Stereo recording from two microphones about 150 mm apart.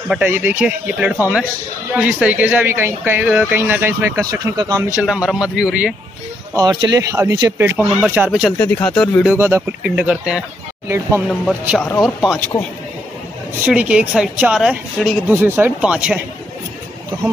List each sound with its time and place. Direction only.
0.1 s speech: 15° right (ahead or behind)
5.0 s speech: 5° right (ahead or behind)
6.5 s a man's voice: 25° right (ahead or behind)
7.7 s speech: 10° right (ahead or behind)
9.2 s speech: 10° right (ahead or behind)
11.8 s speech: 5° left (ahead or behind)
13.7 s speech: 5° right (ahead or behind)
15.2 s speech: 15° right (ahead or behind)